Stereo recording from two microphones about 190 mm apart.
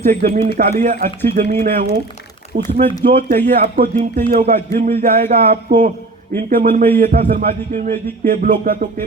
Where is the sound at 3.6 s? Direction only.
45° right (ahead or behind).